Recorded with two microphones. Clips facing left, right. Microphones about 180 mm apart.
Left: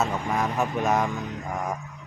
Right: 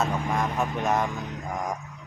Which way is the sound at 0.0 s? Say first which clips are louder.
Left 1 dB; 5° left (ahead or behind).